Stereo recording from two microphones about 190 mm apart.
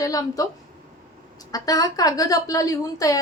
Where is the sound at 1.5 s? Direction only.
20° left (ahead or behind).